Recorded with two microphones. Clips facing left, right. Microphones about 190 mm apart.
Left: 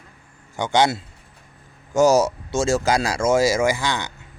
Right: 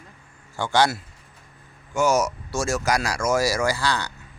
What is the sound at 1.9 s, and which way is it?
Speech, 35° left (ahead or behind).